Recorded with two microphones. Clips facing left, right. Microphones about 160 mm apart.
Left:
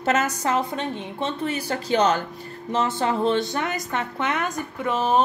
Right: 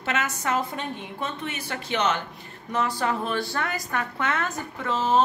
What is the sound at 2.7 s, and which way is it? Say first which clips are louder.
A woman's voice: left 3 dB; 25° left (ahead or behind).